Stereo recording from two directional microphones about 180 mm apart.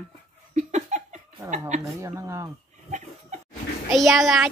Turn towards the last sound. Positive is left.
turn(degrees=0)  # may be behind; listen again after turning